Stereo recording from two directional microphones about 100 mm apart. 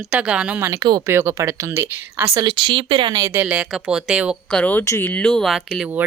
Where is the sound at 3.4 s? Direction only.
10° right (ahead or behind).